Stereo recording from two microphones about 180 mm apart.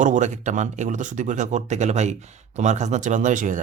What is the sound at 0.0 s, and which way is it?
Speech, 40° right (ahead or behind).